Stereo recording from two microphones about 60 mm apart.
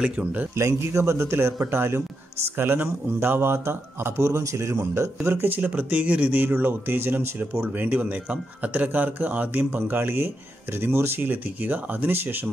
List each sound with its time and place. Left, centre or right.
0.0 s speech: right
0.6 s speech: right
6.4 s speech: right